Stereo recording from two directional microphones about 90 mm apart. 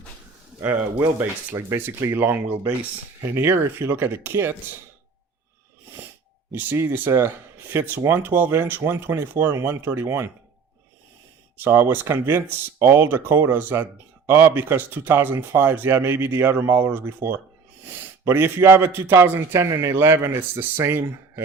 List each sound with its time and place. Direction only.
0.6 s speech: 20° right (ahead or behind)
6.5 s speech: 20° right (ahead or behind)
11.5 s speech: 25° right (ahead or behind)